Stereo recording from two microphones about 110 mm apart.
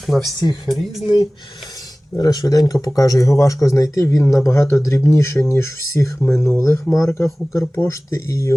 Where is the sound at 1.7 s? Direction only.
35° left (ahead or behind).